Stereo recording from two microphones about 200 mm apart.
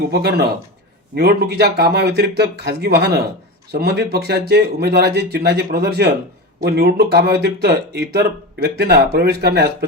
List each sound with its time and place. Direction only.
0.1 s speech: 50° right (ahead or behind)